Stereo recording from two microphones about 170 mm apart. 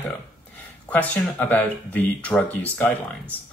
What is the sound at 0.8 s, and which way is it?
Speech, 10° left (ahead or behind).